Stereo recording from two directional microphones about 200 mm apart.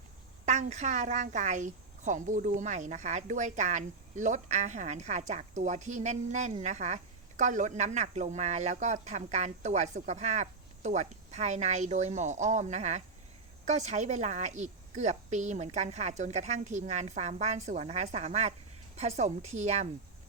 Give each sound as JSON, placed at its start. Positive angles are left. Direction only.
{"t": 0.4, "sound": "a woman's voice", "side_deg": -35}